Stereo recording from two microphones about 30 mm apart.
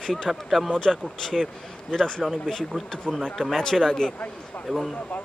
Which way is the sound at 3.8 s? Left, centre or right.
Centre.